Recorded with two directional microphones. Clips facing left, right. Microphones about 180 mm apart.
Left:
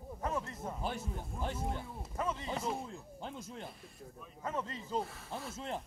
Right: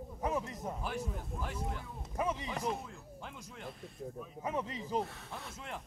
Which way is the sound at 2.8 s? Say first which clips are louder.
Left 3 dB; 30° left (ahead or behind).